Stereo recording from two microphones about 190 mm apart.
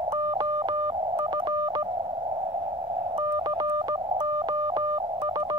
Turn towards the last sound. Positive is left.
turn(degrees=-25)  # may be behind; listen again after turning